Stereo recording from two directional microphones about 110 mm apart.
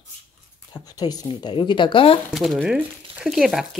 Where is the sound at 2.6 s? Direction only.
5° right (ahead or behind).